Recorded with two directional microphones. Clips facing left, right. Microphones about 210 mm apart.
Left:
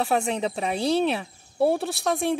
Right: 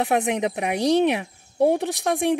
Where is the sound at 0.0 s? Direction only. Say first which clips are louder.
Right 2 dB; 20° right (ahead or behind).